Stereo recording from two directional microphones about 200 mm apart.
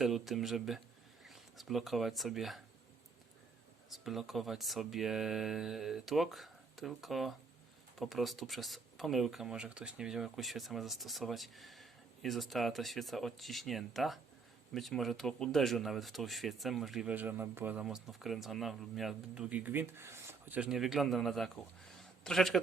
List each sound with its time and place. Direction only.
0.0 s speech: centre (ahead or behind)
3.9 s a man's voice: centre (ahead or behind)